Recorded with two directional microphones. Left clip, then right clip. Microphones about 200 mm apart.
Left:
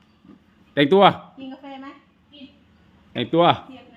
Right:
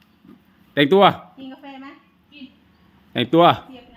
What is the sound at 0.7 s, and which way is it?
Speech, 10° right (ahead or behind).